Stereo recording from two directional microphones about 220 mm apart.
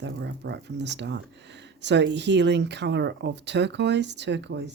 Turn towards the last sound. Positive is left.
turn(degrees=-50)  # may be behind; listen again after turning